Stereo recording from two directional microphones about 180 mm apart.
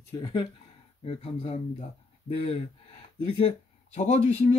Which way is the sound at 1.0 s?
35° left (ahead or behind).